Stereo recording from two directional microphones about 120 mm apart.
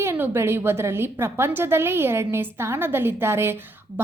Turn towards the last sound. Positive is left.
turn(degrees=-20)  # may be behind; listen again after turning